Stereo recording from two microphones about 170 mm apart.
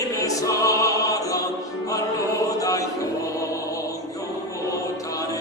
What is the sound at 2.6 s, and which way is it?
Chant, 20° left (ahead or behind).